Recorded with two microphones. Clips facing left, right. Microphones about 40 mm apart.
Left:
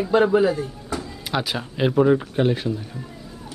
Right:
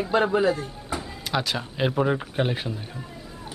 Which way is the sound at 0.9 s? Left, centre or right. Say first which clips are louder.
Left 2 dB; centre.